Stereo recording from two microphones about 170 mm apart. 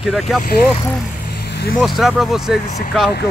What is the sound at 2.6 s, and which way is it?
Speech, 40° left (ahead or behind).